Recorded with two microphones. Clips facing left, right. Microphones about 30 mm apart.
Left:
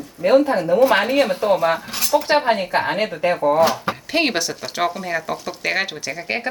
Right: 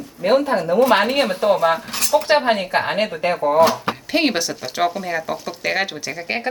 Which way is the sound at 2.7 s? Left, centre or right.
Right.